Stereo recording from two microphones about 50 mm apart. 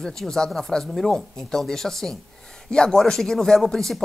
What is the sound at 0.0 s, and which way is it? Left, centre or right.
Speech, centre.